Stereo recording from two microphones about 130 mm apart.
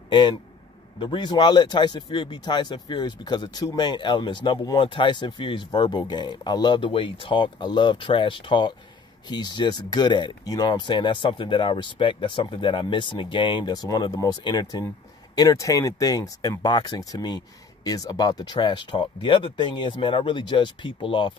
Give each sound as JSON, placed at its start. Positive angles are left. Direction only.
{"t": 0.1, "sound": "speech", "side_deg": 35}